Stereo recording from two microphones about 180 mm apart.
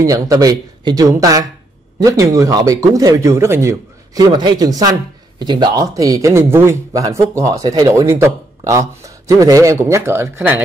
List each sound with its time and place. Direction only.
0.0 s a man's voice: 20° right (ahead or behind)